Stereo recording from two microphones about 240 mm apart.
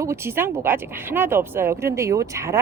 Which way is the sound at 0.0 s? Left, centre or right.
Centre.